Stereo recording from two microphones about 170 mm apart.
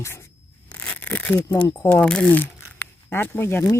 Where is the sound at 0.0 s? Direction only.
15° left (ahead or behind).